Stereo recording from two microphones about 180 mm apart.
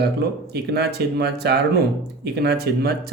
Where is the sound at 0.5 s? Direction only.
65° right (ahead or behind).